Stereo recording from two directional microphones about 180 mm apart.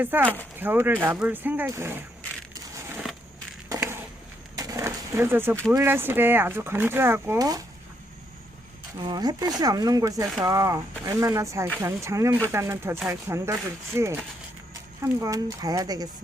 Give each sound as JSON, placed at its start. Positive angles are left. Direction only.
{"t": 0.0, "sound": "speech", "side_deg": -10}
{"t": 2.7, "sound": "a sound", "side_deg": -10}
{"t": 5.7, "sound": "speech", "side_deg": -10}
{"t": 9.0, "sound": "speech", "side_deg": -25}